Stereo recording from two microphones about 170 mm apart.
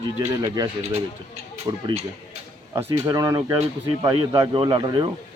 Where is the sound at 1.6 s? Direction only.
35° right (ahead or behind).